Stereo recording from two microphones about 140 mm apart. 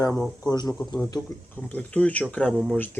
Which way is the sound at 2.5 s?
5° right (ahead or behind).